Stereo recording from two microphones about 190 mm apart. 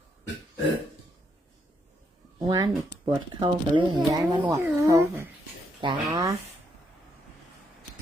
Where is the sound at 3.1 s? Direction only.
25° right (ahead or behind).